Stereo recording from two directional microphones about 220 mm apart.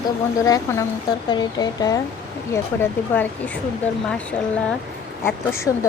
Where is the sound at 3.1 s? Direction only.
5° left (ahead or behind).